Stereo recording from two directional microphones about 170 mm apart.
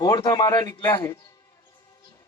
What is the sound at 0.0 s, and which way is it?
Speech, 20° left (ahead or behind).